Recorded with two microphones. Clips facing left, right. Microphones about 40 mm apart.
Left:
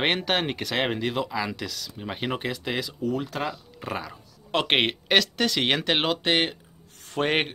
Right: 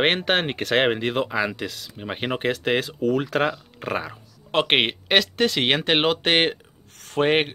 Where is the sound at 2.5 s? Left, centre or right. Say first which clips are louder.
Right 6 dB; right.